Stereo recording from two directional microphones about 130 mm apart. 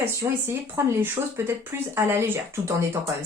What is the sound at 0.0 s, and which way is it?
Speech, 20° right (ahead or behind).